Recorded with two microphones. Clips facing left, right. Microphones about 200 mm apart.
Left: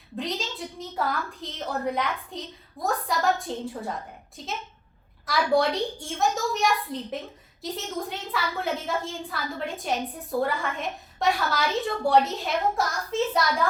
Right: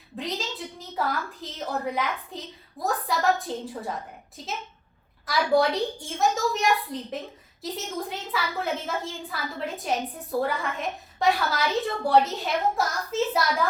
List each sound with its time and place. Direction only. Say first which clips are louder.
0.2 s a woman's voice: left 1 dB; centre (ahead or behind)